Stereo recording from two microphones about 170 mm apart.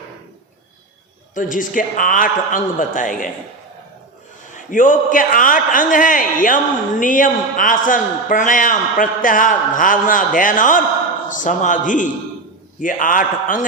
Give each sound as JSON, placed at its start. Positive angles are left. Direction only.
{"t": 1.4, "sound": "a man's voice", "side_deg": 50}
{"t": 4.7, "sound": "a man's voice", "side_deg": 50}